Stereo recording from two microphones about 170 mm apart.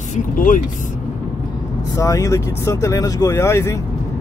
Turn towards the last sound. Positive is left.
turn(degrees=15)  # may be behind; listen again after turning